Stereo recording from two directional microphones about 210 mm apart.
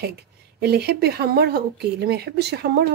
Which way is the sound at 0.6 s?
50° right (ahead or behind).